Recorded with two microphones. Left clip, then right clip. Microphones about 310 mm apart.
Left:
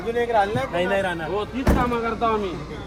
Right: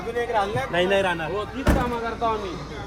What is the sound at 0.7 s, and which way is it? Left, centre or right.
Speech, right.